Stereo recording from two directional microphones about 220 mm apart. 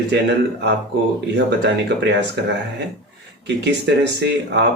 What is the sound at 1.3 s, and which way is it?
Speech, 50° right (ahead or behind).